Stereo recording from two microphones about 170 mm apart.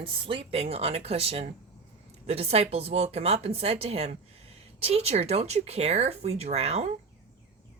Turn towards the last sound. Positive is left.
turn(degrees=-40)  # may be behind; listen again after turning